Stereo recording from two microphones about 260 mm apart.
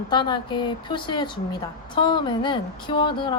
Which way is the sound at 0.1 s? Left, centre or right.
Centre.